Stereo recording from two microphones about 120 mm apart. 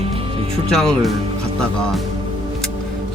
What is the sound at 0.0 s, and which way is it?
Music, 55° right (ahead or behind).